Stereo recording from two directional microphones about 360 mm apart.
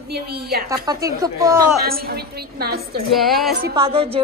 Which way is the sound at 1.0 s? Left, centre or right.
Centre.